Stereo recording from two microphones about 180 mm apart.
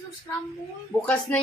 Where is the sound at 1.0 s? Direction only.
10° left (ahead or behind).